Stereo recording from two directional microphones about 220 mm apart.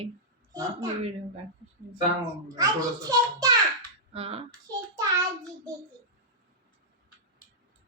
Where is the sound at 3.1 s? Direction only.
15° right (ahead or behind).